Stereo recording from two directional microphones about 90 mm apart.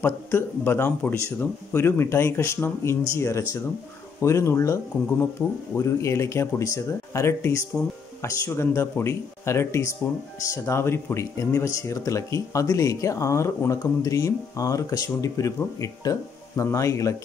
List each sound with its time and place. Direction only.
0.0 s speech: 25° left (ahead or behind)